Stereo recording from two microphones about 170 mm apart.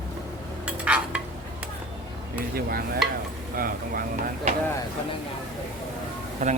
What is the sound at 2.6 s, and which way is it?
Stir, 60° right (ahead or behind).